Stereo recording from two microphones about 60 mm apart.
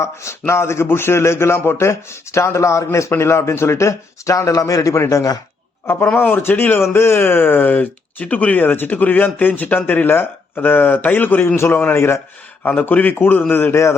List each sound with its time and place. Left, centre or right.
0.0 s speech: left
5.8 s speech: left
12.8 s a man's voice: left